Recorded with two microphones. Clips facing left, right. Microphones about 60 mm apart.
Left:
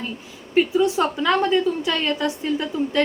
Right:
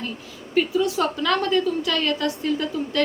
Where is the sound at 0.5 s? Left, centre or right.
Left.